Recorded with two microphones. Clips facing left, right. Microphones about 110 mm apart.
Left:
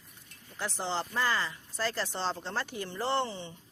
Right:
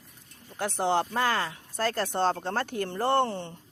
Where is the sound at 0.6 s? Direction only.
55° right (ahead or behind).